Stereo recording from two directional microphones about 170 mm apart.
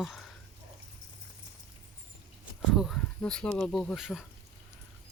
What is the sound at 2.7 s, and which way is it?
Speech, centre (ahead or behind).